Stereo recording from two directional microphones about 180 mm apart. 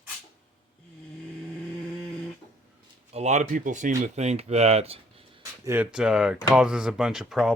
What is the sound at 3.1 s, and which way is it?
Speech, 40° right (ahead or behind).